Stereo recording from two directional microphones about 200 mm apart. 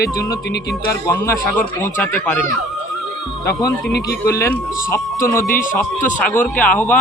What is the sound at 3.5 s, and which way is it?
Speech, 15° left (ahead or behind).